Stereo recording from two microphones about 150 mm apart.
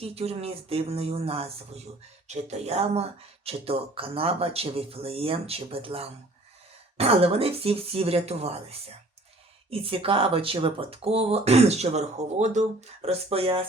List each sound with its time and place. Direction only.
0.0 s speech: 40° right (ahead or behind)
9.6 s speech: 40° right (ahead or behind)